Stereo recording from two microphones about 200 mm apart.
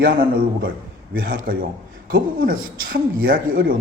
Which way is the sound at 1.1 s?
45° right (ahead or behind).